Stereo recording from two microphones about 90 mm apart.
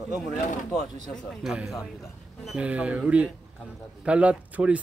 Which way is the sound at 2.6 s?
15° right (ahead or behind).